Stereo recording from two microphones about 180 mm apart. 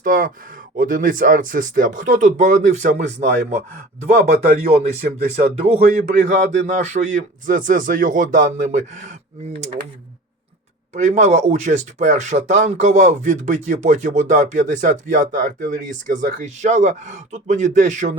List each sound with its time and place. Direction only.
0.0 s speech: 50° right (ahead or behind)
10.9 s speech: 40° right (ahead or behind)